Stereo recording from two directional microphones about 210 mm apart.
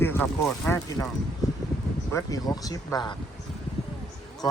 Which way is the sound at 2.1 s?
15° left (ahead or behind).